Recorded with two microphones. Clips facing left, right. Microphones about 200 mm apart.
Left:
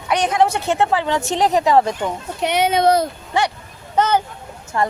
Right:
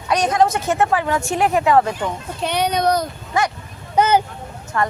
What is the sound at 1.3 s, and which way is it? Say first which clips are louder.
Speech: left 1 dB; 30° left (ahead or behind).